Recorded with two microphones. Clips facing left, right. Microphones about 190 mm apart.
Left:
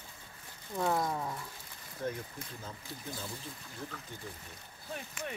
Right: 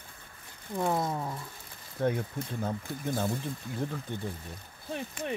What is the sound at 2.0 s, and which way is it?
Speech, 65° right (ahead or behind).